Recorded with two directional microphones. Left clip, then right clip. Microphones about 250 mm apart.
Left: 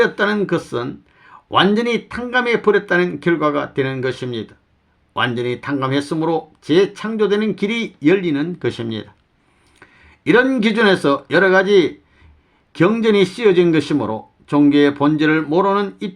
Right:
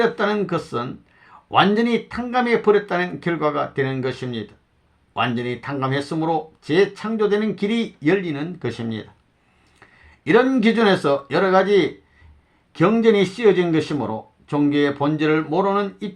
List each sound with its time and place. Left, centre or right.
0.0 s speech: left